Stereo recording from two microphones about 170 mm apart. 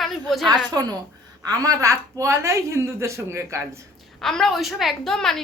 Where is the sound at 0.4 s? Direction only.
25° right (ahead or behind).